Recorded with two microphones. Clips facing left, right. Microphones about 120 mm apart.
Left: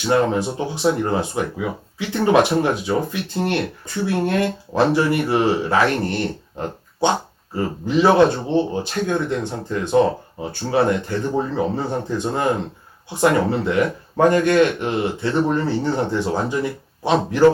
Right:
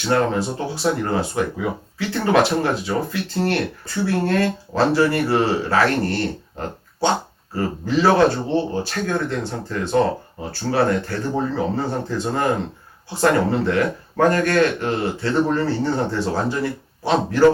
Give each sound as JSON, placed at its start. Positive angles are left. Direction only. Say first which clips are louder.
{"t": 0.1, "sound": "a man's voice", "louder": "left 1 dB", "side_deg": 15}